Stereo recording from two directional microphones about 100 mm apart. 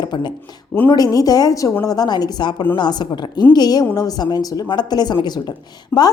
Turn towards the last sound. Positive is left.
turn(degrees=45)  # may be behind; listen again after turning